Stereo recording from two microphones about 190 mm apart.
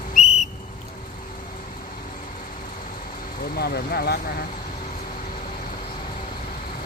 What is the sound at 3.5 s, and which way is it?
Speech, 55° left (ahead or behind).